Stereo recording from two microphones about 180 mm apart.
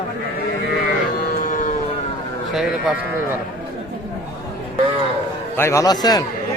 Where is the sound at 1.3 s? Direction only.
45° left (ahead or behind).